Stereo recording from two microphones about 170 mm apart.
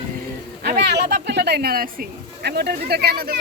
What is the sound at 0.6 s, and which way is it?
A child's voice, 75° right (ahead or behind).